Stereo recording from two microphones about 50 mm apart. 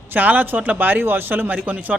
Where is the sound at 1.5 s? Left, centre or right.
Right.